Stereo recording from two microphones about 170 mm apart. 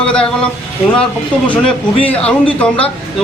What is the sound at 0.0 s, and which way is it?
Speech, 5° left (ahead or behind).